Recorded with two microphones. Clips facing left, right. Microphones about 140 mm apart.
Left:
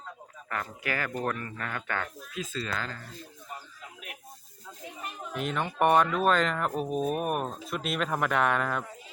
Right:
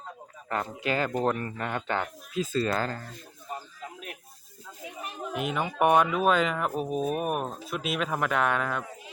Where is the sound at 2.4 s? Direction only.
35° right (ahead or behind).